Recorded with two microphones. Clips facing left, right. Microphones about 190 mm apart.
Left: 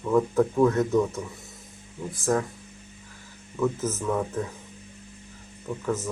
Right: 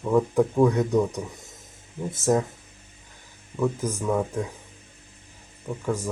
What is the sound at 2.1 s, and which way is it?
Speech, 20° right (ahead or behind).